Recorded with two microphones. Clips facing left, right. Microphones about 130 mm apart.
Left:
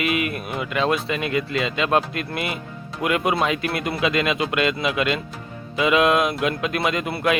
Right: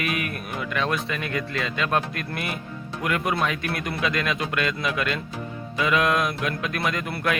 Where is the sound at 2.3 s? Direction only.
90° left.